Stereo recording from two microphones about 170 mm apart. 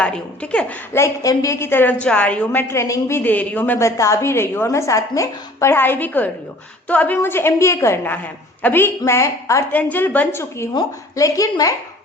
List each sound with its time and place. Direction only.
0.0 s speech: 5° left (ahead or behind)
0.9 s a woman's voice: 20° left (ahead or behind)